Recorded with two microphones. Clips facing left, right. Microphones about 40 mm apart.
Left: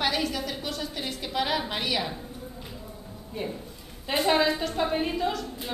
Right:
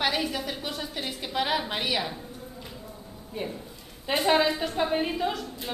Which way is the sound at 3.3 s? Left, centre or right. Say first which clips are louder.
Even; centre.